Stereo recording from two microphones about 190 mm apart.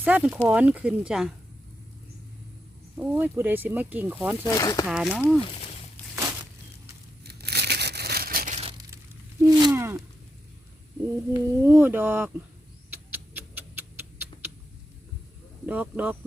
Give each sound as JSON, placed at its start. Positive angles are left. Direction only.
{"t": 0.0, "sound": "speech", "side_deg": -10}
{"t": 3.0, "sound": "speech", "side_deg": -10}
{"t": 4.4, "sound": "speech", "side_deg": 20}
{"t": 4.9, "sound": "speech", "side_deg": -5}
{"t": 7.3, "sound": "tearing", "side_deg": -60}
{"t": 9.4, "sound": "a sound", "side_deg": -20}
{"t": 9.7, "sound": "a sound", "side_deg": -10}
{"t": 11.3, "sound": "speech", "side_deg": -15}
{"t": 12.9, "sound": "a sound", "side_deg": -10}
{"t": 15.6, "sound": "speech", "side_deg": -10}